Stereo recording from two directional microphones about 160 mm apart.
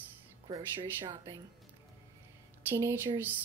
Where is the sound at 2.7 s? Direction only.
15° right (ahead or behind).